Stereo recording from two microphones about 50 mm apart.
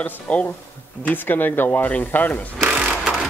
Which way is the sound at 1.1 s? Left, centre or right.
Left.